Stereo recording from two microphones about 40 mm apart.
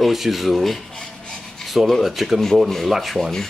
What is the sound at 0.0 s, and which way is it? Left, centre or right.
Speech, centre.